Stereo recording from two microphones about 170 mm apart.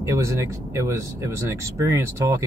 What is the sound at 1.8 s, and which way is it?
Speech, 15° right (ahead or behind).